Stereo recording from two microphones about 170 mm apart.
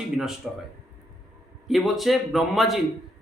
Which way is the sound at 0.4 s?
Centre (ahead or behind).